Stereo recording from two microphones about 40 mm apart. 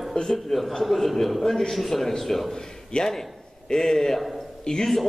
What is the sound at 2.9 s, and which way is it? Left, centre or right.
A man's voice, centre.